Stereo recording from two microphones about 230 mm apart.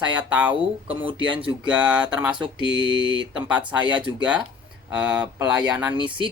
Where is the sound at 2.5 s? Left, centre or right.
Right.